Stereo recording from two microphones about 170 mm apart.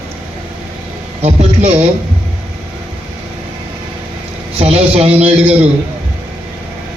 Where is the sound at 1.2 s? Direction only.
40° right (ahead or behind).